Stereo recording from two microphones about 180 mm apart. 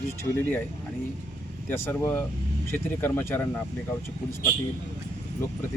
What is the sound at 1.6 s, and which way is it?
Speech, 10° left (ahead or behind).